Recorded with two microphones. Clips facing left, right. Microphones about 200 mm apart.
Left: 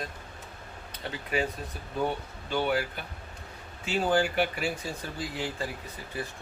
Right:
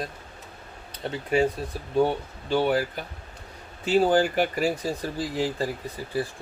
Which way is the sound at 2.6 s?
35° right (ahead or behind).